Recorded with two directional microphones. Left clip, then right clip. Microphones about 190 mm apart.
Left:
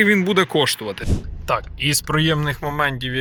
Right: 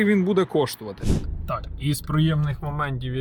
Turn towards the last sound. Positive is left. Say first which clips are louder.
# left 8 dB
turn(degrees=0)  # may be behind; listen again after turning